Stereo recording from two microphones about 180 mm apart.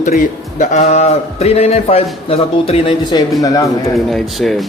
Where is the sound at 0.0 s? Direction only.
45° left (ahead or behind); by 3.7 s 20° left (ahead or behind).